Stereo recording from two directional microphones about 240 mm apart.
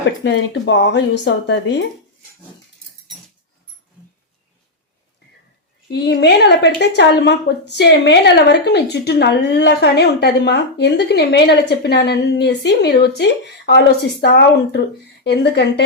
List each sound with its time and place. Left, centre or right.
0.3 s speech: left
5.9 s speech: left